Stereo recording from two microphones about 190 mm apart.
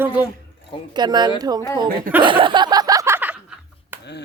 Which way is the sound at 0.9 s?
20° right (ahead or behind).